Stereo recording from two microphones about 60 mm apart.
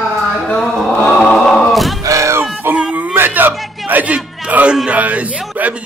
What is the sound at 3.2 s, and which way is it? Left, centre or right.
Music, right.